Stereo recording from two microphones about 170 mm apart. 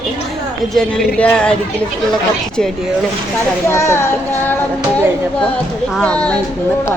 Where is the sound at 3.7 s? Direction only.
15° left (ahead or behind).